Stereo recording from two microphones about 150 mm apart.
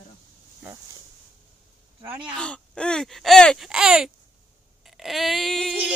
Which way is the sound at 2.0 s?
15° right (ahead or behind).